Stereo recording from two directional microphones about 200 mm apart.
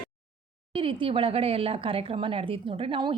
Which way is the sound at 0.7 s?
25° right (ahead or behind).